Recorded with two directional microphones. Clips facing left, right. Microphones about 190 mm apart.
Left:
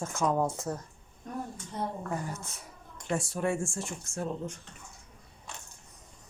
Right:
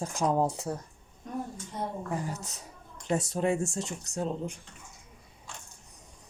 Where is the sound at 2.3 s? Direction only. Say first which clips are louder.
Right 1 dB; 40° right (ahead or behind).